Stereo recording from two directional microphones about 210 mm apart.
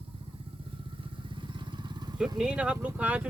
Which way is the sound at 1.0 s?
25° right (ahead or behind).